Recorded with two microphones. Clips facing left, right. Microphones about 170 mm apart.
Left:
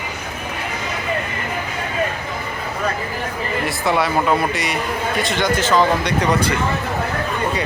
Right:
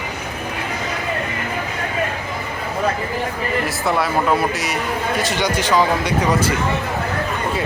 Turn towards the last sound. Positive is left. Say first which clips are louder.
# left 1 dB
turn(degrees=-10)  # may be behind; listen again after turning